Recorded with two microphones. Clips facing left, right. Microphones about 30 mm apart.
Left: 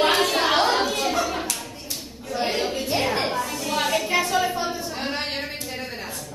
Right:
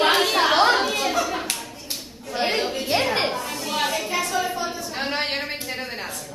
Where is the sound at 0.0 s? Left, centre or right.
Centre.